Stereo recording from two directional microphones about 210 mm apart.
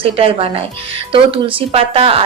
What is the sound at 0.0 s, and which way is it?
Speech, 25° right (ahead or behind).